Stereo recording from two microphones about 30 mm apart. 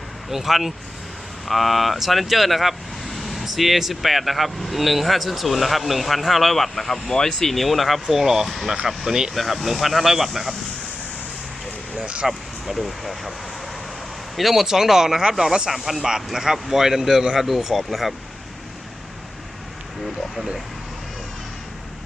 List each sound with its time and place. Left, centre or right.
0.3 s speech: centre
1.5 s speech: centre
11.9 s speech: right
12.3 s speech: centre
14.3 s speech: centre